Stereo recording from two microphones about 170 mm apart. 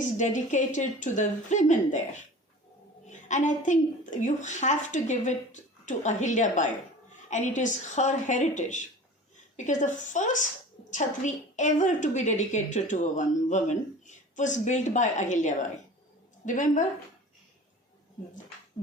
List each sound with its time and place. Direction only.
0.0 s a woman's voice: 45° left (ahead or behind)